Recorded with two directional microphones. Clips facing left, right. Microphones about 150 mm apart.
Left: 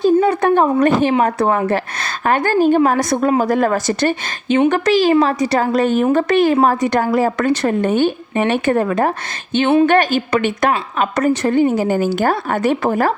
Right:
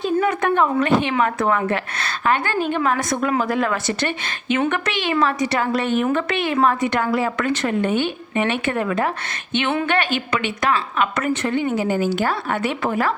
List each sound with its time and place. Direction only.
0.0 s speech: 35° left (ahead or behind)